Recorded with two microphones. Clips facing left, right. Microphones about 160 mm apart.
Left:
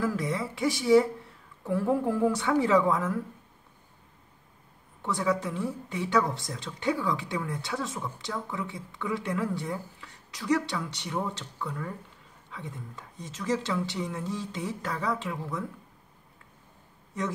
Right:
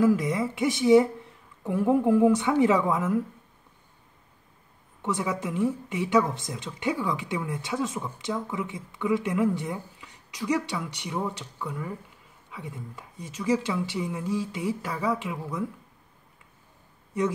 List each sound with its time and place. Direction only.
0.0 s speech: 15° right (ahead or behind)
5.0 s speech: 15° right (ahead or behind)